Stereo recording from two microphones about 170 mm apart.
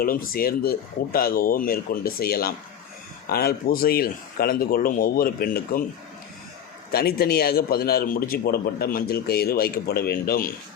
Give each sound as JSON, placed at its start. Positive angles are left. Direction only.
{"t": 0.0, "sound": "a man's voice", "side_deg": 60}
{"t": 6.9, "sound": "a man's voice", "side_deg": 65}